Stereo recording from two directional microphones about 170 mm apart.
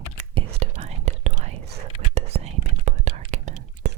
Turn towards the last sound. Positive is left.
turn(degrees=-45)  # may be behind; listen again after turning